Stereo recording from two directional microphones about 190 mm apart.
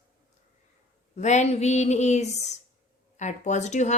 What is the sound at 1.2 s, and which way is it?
A woman's voice, 40° left (ahead or behind).